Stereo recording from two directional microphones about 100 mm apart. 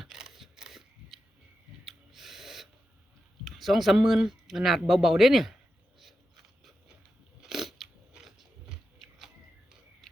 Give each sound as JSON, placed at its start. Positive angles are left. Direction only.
{"t": 0.0, "sound": "scissors", "side_deg": -5}
{"t": 1.8, "sound": "snort", "side_deg": 0}
{"t": 3.4, "sound": "speech", "side_deg": 0}
{"t": 6.0, "sound": "gears", "side_deg": 0}
{"t": 7.4, "sound": "biting", "side_deg": -5}